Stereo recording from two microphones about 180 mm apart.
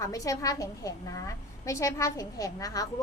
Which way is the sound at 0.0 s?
20° left (ahead or behind).